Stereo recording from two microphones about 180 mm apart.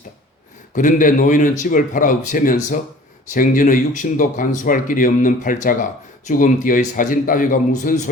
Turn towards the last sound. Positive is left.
turn(degrees=50)  # may be behind; listen again after turning